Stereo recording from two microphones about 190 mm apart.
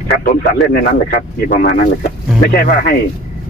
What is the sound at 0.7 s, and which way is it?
Speech, 45° left (ahead or behind).